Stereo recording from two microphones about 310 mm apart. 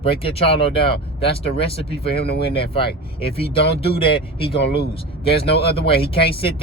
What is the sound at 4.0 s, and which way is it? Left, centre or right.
Speech, centre.